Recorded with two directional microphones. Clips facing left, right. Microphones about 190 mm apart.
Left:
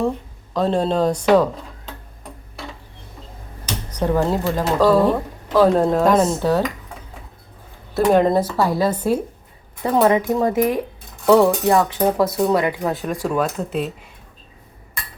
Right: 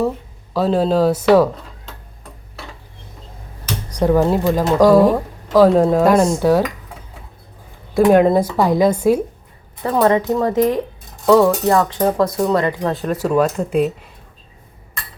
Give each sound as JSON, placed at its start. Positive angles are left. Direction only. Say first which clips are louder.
{"t": 0.5, "sound": "speech", "louder": "right 3 dB", "side_deg": -5}
{"t": 3.9, "sound": "speech", "louder": "right 4 dB", "side_deg": -10}
{"t": 7.9, "sound": "speech", "louder": "right 3 dB", "side_deg": -5}
{"t": 9.8, "sound": "speech", "louder": "right 1 dB", "side_deg": 15}
{"t": 13.3, "sound": "speech", "louder": "right 7 dB", "side_deg": -5}